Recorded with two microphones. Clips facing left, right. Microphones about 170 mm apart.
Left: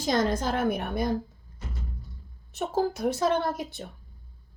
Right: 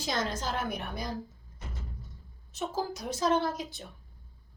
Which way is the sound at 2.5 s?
60° left (ahead or behind).